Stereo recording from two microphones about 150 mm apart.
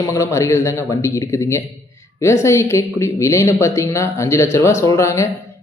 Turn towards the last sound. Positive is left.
turn(degrees=20)  # may be behind; listen again after turning